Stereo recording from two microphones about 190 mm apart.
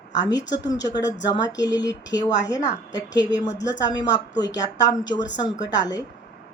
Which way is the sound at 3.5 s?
65° left (ahead or behind).